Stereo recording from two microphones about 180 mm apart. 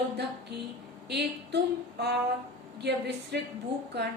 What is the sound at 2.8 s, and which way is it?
Speech, 65° right (ahead or behind).